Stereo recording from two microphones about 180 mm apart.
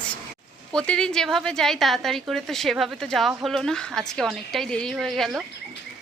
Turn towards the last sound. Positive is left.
turn(degrees=0)  # may be behind; listen again after turning